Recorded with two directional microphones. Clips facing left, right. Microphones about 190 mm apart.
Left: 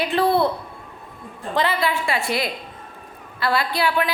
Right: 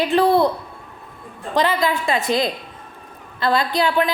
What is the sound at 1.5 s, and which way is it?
A woman's voice, 15° right (ahead or behind).